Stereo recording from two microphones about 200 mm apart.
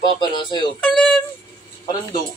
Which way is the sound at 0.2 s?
25° left (ahead or behind).